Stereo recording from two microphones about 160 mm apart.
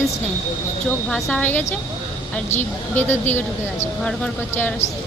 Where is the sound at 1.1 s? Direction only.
10° left (ahead or behind).